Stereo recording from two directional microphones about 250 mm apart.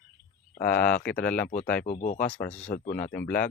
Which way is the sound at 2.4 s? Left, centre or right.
Centre.